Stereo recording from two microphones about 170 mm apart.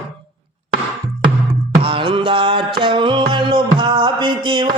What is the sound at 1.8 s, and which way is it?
Music, 30° right (ahead or behind).